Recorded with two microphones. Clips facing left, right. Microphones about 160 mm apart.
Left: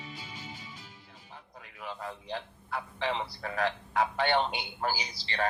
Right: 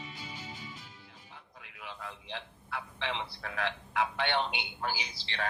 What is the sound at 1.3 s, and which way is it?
A man's voice, 40° left (ahead or behind).